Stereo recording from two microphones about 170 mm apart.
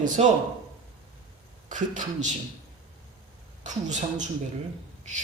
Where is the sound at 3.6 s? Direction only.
45° right (ahead or behind).